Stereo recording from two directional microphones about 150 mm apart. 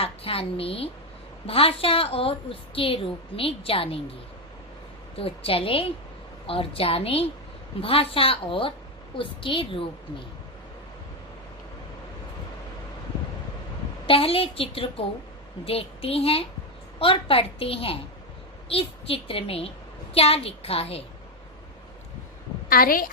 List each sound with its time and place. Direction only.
0.0 s a woman's voice: 40° left (ahead or behind)
5.1 s a woman's voice: 40° left (ahead or behind)
14.1 s a woman's voice: 40° left (ahead or behind)
22.7 s a woman's voice: 75° left (ahead or behind)